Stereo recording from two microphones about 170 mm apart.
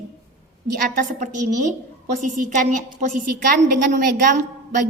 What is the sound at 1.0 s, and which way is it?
Speech, 45° right (ahead or behind).